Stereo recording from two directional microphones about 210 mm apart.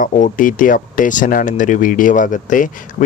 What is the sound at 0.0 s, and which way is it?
Speech, 40° left (ahead or behind).